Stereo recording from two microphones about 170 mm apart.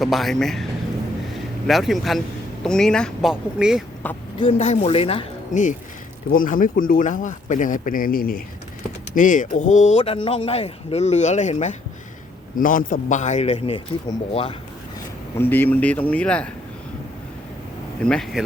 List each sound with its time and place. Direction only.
0.0 s speech: centre (ahead or behind)
1.3 s vehicle: centre (ahead or behind)
2.6 s speech: 5° left (ahead or behind)
4.0 s speech: 10° left (ahead or behind)
4.4 s speech: 35° left (ahead or behind)
6.3 s speech: 55° left (ahead or behind); by 13.8 s 35° left (ahead or behind)
15.4 s speech: 10° left (ahead or behind)
18.0 s speech: 5° left (ahead or behind)